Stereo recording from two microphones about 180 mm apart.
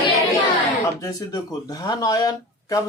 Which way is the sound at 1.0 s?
20° left (ahead or behind).